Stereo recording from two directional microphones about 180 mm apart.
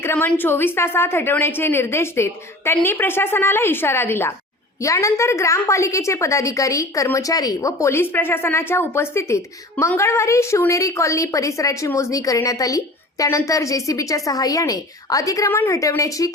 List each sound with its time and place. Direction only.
0.0 s a woman's voice: 10° left (ahead or behind)